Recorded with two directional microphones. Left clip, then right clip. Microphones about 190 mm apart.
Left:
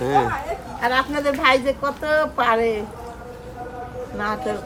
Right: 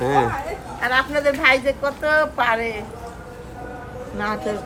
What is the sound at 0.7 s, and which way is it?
A woman's voice, 65° left (ahead or behind).